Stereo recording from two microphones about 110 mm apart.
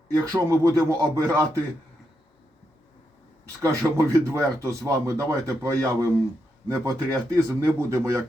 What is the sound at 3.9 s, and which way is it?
Speech, 25° right (ahead or behind).